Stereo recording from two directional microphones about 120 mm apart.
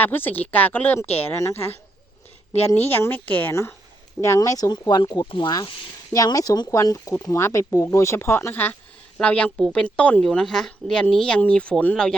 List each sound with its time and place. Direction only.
0.0 s speech: 15° left (ahead or behind)
1.0 s a woman's voice: 55° left (ahead or behind)
1.4 s speech: 20° left (ahead or behind)
2.9 s a woman's voice: 15° left (ahead or behind)